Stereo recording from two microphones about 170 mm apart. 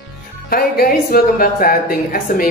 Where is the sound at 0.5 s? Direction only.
60° left (ahead or behind).